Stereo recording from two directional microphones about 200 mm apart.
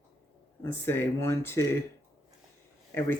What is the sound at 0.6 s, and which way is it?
Speech, 10° left (ahead or behind).